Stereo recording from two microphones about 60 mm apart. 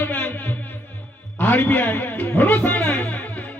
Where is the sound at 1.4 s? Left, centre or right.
Left.